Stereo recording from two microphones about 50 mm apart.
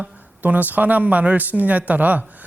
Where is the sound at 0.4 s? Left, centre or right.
Right.